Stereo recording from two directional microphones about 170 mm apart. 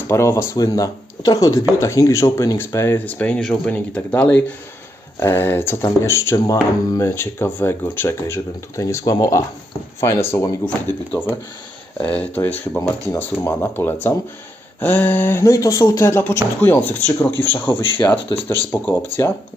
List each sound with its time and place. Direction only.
0.1 s speech: 15° left (ahead or behind)